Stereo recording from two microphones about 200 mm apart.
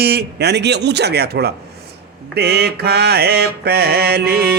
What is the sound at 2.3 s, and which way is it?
Mantra, 55° right (ahead or behind).